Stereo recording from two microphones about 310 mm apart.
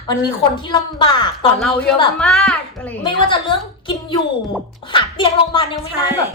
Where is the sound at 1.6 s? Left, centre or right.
Centre.